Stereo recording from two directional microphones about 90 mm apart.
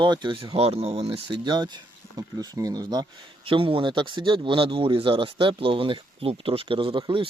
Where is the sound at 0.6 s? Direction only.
90° right.